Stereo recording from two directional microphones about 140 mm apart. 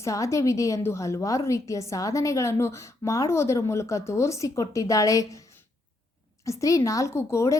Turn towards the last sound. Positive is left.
turn(degrees=20)  # may be behind; listen again after turning